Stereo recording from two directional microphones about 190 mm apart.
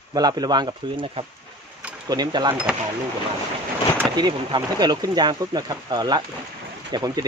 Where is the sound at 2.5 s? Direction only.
5° right (ahead or behind).